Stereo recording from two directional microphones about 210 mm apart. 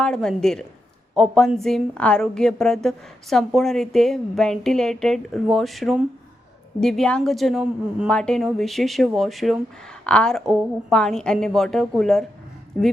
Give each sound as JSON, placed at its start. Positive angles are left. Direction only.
{"t": 0.0, "sound": "a woman's voice", "side_deg": 5}